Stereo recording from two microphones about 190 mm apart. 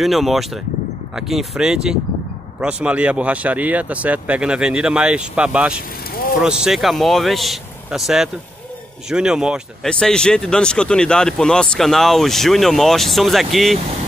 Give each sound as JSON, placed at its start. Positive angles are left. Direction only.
{"t": 0.0, "sound": "speech", "side_deg": 0}